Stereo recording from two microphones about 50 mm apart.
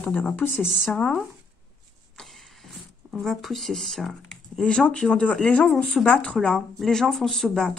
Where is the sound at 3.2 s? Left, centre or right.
Centre.